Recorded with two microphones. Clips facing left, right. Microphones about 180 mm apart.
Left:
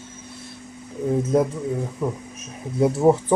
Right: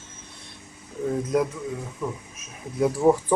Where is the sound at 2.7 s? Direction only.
25° left (ahead or behind).